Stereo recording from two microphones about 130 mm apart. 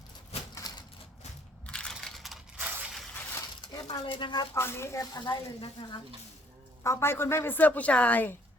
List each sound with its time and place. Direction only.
0.7 s typewriter: 30° left (ahead or behind)
1.6 s crushing: 5° left (ahead or behind)
3.3 s a sound: 30° left (ahead or behind)
4.0 s speech: 40° left (ahead or behind)
4.5 s speech: 20° left (ahead or behind)
6.8 s a woman's voice: 20° left (ahead or behind)